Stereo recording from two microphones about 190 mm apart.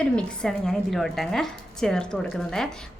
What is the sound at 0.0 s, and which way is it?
A woman's voice, 5° left (ahead or behind).